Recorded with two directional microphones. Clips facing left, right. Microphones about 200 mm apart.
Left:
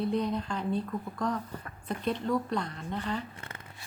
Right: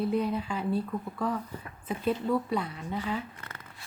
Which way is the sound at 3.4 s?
25° left (ahead or behind).